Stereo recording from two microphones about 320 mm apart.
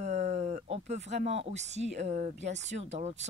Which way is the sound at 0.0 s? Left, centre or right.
Right.